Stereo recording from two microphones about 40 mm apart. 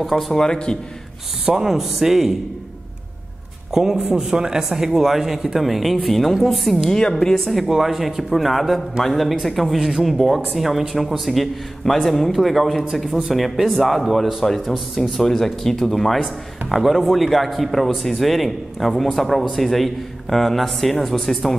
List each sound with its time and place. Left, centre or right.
0.0 s a man's voice: centre
0.4 s a man's voice: left
1.4 s speech: centre
3.7 s a man's voice: centre
6.9 s speech: centre
7.4 s a man's voice: centre
9.8 s speech: centre
10.0 s a man's voice: centre
15.0 s a man's voice: centre